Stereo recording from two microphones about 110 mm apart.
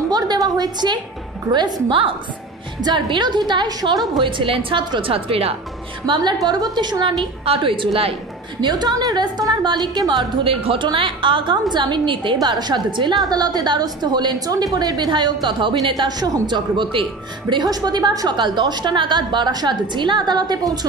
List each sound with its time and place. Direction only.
0.1 s a sound: 40° right (ahead or behind)
1.5 s a woman's voice: 45° right (ahead or behind)
6.0 s a woman's voice: 45° right (ahead or behind)
8.5 s a woman's voice: 40° right (ahead or behind)